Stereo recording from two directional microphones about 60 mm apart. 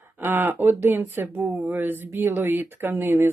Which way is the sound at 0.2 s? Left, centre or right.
Right.